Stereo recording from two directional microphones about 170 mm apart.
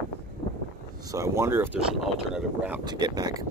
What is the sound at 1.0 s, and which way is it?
Speech, 20° right (ahead or behind).